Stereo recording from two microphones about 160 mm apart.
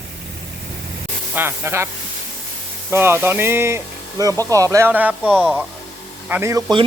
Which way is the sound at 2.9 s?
15° right (ahead or behind).